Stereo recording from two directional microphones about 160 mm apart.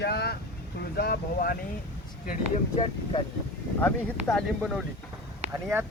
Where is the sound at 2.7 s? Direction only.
35° left (ahead or behind).